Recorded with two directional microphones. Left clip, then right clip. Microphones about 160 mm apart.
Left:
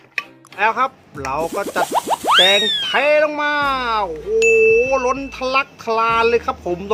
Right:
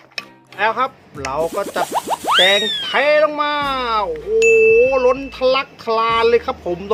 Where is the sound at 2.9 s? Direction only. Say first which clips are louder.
Right 2 dB; 15° left (ahead or behind).